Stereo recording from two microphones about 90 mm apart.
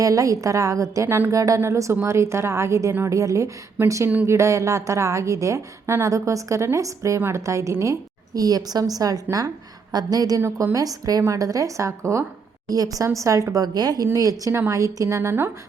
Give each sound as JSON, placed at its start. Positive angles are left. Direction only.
{"t": 0.0, "sound": "a woman's voice", "side_deg": -40}